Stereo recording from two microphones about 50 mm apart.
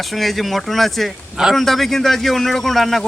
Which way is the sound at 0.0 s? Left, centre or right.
Centre.